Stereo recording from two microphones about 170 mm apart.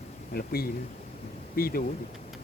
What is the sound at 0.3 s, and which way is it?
Speech, 65° left (ahead or behind).